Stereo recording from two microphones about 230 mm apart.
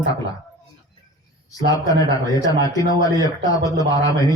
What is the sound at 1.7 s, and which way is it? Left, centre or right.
A man's voice, centre.